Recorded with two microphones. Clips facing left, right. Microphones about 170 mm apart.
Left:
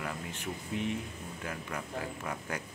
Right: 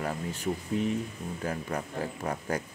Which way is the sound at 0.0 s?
40° right (ahead or behind).